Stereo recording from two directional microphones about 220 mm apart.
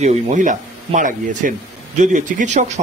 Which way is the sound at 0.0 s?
30° right (ahead or behind).